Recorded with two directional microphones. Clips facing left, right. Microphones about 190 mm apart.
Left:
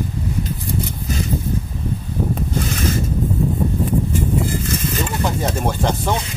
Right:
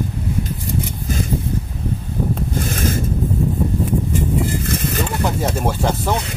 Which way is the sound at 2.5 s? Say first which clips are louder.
Left 1 dB; 50° right (ahead or behind).